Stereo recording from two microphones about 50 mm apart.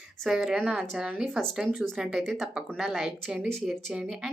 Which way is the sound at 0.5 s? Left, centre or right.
Right.